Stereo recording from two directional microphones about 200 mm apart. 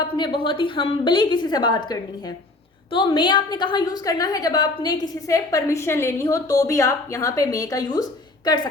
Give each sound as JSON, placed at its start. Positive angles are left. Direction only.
{"t": 0.1, "sound": "a woman's voice", "side_deg": 25}